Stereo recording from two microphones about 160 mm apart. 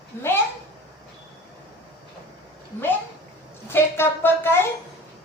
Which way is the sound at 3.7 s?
15° left (ahead or behind).